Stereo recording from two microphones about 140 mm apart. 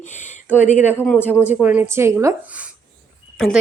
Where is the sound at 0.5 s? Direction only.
55° left (ahead or behind).